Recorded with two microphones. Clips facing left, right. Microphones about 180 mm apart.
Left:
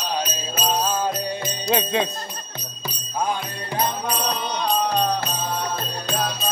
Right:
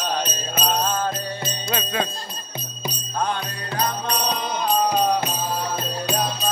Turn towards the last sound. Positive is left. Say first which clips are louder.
# right 2 dB
turn(degrees=0)  # may be behind; listen again after turning